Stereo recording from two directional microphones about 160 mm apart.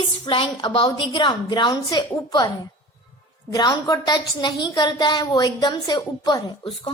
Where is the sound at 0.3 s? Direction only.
30° left (ahead or behind).